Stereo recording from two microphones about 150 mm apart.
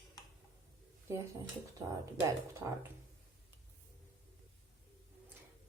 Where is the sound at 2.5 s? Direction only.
20° right (ahead or behind).